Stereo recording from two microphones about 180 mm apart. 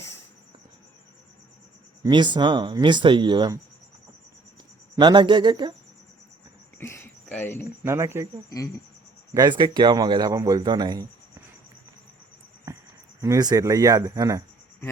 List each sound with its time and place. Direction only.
2.0 s a man's voice: 25° right (ahead or behind)
4.9 s a man's voice: 25° right (ahead or behind)
6.7 s a sound: 15° left (ahead or behind)
7.9 s speech: 15° right (ahead or behind)
8.4 s speech: 20° left (ahead or behind)
9.3 s a man's voice: 25° right (ahead or behind)
13.2 s a man's voice: 20° right (ahead or behind)